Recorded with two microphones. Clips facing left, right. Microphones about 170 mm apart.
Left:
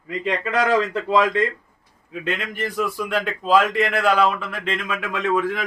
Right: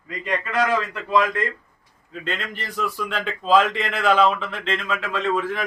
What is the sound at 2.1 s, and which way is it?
A man's voice, 10° left (ahead or behind).